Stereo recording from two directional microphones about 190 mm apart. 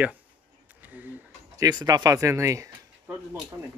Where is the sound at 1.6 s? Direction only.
20° right (ahead or behind).